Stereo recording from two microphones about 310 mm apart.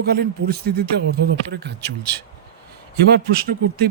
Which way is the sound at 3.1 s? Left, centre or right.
Right.